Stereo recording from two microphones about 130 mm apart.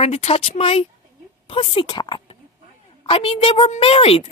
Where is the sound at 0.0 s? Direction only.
50° left (ahead or behind).